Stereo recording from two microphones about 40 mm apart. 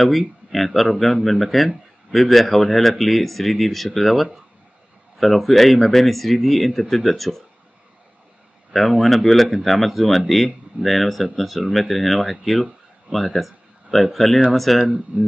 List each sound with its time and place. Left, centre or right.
0.7 s speech: centre
8.7 s speech: centre
15.1 s speech: right